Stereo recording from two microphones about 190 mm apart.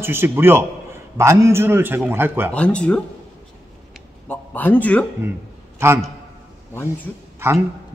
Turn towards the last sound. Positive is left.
turn(degrees=-15)  # may be behind; listen again after turning